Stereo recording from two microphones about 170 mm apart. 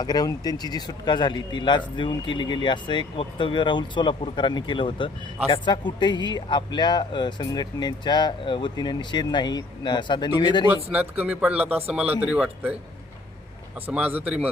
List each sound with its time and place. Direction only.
0.0 s speech: 25° left (ahead or behind)
10.9 s speech: 10° right (ahead or behind)
13.8 s speech: 10° right (ahead or behind)